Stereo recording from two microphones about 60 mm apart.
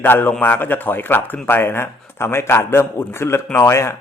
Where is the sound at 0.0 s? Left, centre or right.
Left.